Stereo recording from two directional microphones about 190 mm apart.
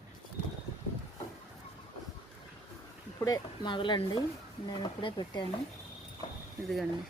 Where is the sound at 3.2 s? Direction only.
20° left (ahead or behind).